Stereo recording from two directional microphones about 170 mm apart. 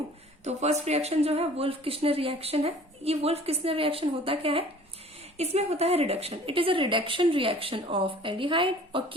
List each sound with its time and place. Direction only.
0.4 s a woman's voice: 40° right (ahead or behind)